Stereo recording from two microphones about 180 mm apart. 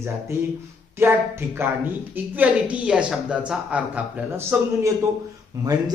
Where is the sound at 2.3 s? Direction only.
10° right (ahead or behind).